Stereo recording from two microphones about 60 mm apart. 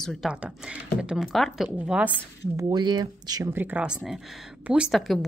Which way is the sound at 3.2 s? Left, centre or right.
Right.